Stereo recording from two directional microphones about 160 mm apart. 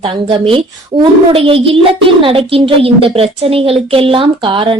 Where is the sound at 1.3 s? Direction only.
35° right (ahead or behind).